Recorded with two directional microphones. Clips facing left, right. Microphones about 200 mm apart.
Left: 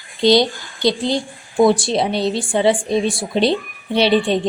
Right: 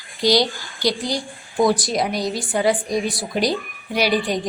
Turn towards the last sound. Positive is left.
turn(degrees=25)  # may be behind; listen again after turning